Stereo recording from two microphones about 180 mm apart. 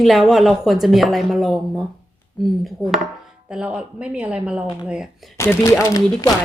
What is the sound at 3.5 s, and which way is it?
A man's voice, 5° right (ahead or behind).